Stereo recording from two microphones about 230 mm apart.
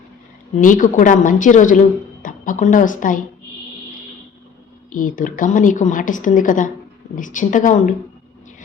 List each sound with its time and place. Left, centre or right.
0.6 s a woman's voice: left
4.9 s a woman's voice: left